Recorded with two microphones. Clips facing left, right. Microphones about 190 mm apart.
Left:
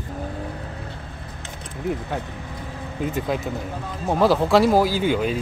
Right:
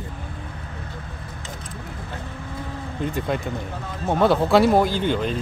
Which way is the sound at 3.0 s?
5° left (ahead or behind).